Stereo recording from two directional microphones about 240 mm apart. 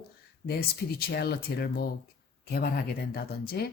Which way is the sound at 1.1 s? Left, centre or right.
Left.